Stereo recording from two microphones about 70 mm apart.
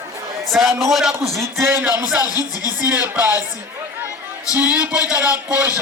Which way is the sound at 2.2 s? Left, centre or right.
Left.